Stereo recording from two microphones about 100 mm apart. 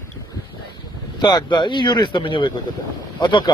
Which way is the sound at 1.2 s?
45° left (ahead or behind).